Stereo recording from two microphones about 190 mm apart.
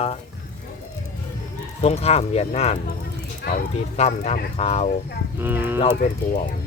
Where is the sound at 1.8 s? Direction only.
35° left (ahead or behind).